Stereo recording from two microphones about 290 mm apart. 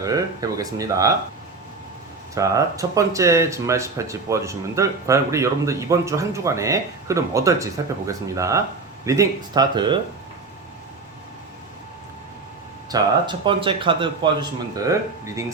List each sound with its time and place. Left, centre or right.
0.0 s speech: centre
2.3 s speech: centre
12.9 s speech: centre